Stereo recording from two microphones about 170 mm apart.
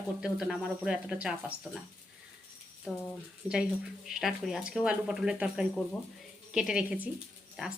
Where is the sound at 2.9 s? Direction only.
Centre (ahead or behind).